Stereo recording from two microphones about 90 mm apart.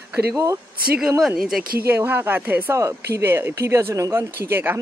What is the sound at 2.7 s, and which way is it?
Speech, 35° right (ahead or behind).